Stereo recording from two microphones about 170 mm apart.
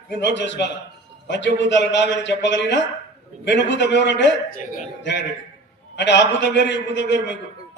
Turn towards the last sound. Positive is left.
turn(degrees=90)